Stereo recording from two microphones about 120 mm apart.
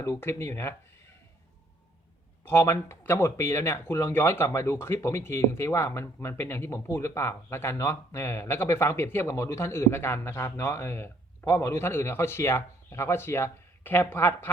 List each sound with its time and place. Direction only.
0.0 s speech: 25° left (ahead or behind)
2.4 s speech: 20° left (ahead or behind)